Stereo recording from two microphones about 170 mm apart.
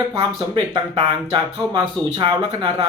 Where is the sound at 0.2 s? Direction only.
30° right (ahead or behind).